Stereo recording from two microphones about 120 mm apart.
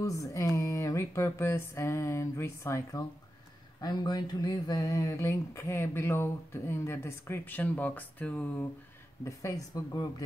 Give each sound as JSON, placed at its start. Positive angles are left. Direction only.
{"t": 0.0, "sound": "speech", "side_deg": 25}
{"t": 3.8, "sound": "speech", "side_deg": 35}
{"t": 9.2, "sound": "speech", "side_deg": 25}